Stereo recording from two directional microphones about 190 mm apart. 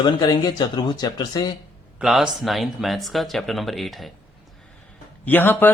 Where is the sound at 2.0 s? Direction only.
5° right (ahead or behind).